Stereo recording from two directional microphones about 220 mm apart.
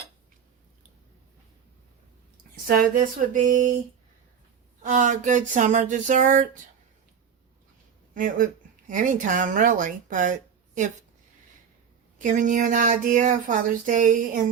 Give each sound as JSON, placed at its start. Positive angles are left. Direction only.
{"t": 2.6, "sound": "speech", "side_deg": -35}
{"t": 4.8, "sound": "speech", "side_deg": -35}
{"t": 8.1, "sound": "speech", "side_deg": -40}
{"t": 12.2, "sound": "speech", "side_deg": -35}